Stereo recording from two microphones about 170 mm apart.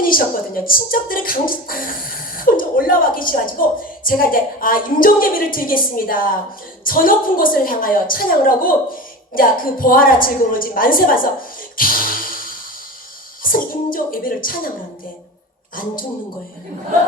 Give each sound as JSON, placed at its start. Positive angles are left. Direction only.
{"t": 0.0, "sound": "speech", "side_deg": 55}
{"t": 11.8, "sound": "a sound", "side_deg": 55}
{"t": 13.4, "sound": "speech", "side_deg": 55}